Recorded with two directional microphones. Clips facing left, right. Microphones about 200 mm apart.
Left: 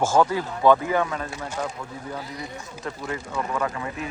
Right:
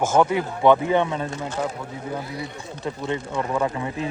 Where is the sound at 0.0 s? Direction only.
20° right (ahead or behind).